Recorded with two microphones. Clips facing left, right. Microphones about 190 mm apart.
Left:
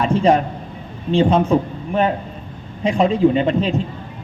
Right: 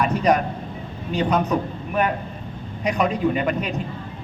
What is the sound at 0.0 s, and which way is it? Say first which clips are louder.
A man's voice: left 4 dB; 25° left (ahead or behind).